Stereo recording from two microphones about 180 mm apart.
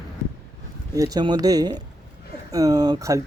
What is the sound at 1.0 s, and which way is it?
Speech, 20° right (ahead or behind).